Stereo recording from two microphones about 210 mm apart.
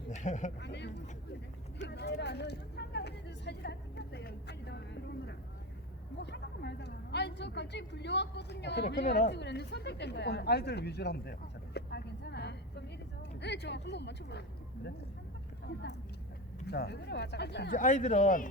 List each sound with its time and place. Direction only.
0.1 s a sound: 35° left (ahead or behind)
0.6 s speech: 55° left (ahead or behind)
1.8 s vehicle: 55° left (ahead or behind)
6.3 s a woman's voice: 50° left (ahead or behind)
9.0 s speech: 35° left (ahead or behind)
9.3 s a woman's voice: 55° left (ahead or behind)
15.6 s speech: 55° left (ahead or behind)
17.7 s speech: 35° left (ahead or behind)